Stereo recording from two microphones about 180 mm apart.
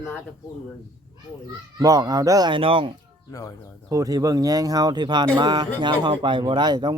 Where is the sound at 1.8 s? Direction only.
20° right (ahead or behind).